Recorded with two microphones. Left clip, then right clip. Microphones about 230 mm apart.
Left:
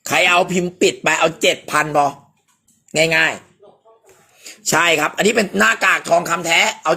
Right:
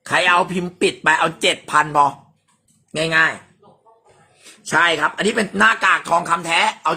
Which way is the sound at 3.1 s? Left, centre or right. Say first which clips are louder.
Right 3 dB; right.